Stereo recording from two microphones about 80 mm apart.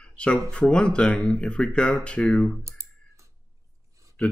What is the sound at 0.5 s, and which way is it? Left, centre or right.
Speech, centre.